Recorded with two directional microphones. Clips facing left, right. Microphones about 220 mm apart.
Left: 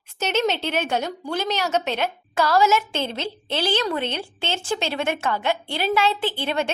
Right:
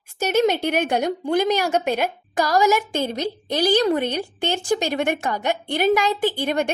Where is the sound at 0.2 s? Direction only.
10° right (ahead or behind).